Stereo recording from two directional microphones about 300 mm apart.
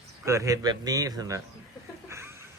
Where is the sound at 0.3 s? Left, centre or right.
Centre.